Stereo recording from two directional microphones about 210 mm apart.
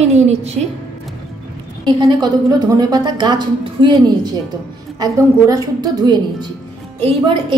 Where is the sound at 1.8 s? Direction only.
20° right (ahead or behind).